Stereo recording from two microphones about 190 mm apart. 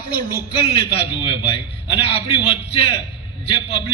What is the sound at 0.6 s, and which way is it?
A man's voice, 30° left (ahead or behind).